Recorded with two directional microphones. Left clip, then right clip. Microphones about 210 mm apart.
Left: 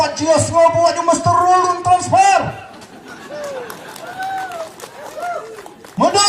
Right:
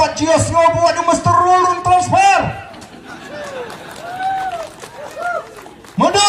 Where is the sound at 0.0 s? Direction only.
30° left (ahead or behind).